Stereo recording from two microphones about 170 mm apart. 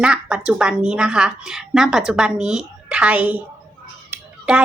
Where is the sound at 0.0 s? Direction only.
5° right (ahead or behind).